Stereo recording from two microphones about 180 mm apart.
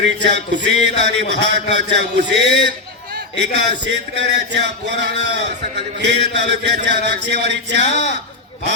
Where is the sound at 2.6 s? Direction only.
60° right (ahead or behind).